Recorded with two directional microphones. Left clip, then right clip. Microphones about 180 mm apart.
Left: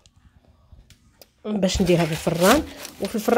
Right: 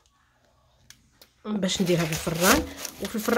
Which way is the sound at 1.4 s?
10° left (ahead or behind).